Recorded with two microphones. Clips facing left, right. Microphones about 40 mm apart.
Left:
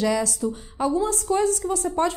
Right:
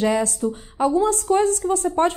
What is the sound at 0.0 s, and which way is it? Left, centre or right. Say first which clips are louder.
A woman's voice: right 3 dB; right.